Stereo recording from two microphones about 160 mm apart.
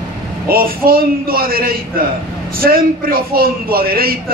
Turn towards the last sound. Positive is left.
turn(degrees=-70)  # may be behind; listen again after turning